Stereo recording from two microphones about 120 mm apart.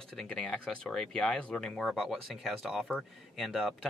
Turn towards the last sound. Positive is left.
turn(degrees=0)  # may be behind; listen again after turning